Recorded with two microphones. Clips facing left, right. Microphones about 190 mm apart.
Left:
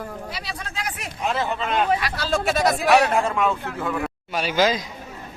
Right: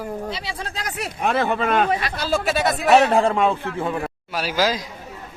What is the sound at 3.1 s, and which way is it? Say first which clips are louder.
Speech: right 4 dB; 30° right (ahead or behind).